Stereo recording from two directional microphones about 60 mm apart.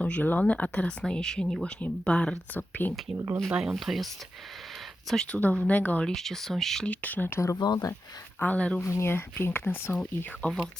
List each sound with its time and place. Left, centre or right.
0.0 s speech: left
2.6 s speech: left
3.2 s speech: right
3.5 s speech: centre
3.8 s speech: centre
5.2 s speech: left
6.1 s speech: centre
6.8 s speech: left
7.4 s speech: left
8.4 s speech: left
8.8 s speech: left
10.4 s speech: left